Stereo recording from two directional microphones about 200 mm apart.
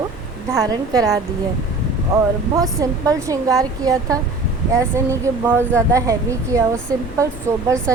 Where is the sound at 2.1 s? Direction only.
15° right (ahead or behind).